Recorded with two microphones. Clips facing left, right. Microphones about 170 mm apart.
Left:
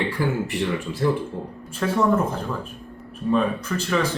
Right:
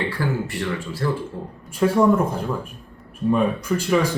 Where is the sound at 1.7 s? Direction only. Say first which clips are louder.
Right 5 dB; 10° right (ahead or behind).